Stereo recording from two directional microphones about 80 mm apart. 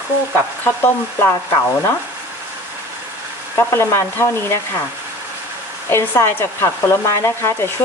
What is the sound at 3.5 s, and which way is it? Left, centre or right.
Speech, left.